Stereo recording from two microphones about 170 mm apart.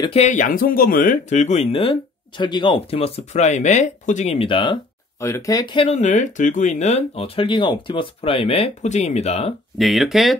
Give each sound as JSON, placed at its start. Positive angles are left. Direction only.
{"t": 0.0, "sound": "speech", "side_deg": 40}
{"t": 1.3, "sound": "speech", "side_deg": 40}
{"t": 5.2, "sound": "speech", "side_deg": 20}
{"t": 5.9, "sound": "speech", "side_deg": 45}
{"t": 9.8, "sound": "speech", "side_deg": 0}